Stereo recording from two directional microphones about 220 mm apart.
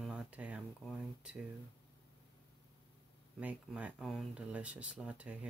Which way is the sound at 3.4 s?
5° right (ahead or behind).